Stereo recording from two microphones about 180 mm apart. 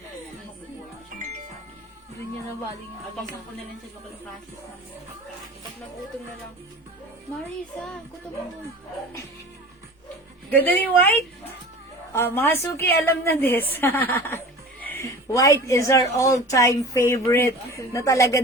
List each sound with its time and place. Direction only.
10.5 s a woman's voice: 10° left (ahead or behind)